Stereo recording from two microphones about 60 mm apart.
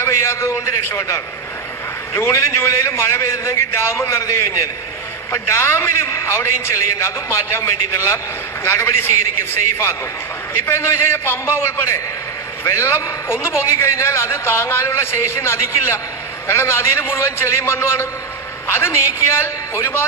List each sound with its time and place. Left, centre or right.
0.0 s a man's voice: left
2.1 s a man's voice: left
5.5 s a man's voice: left